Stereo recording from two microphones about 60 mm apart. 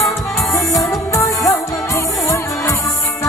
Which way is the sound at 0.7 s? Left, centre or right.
Left.